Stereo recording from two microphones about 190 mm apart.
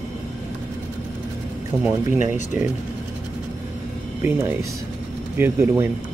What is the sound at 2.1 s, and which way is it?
Speech, 40° left (ahead or behind).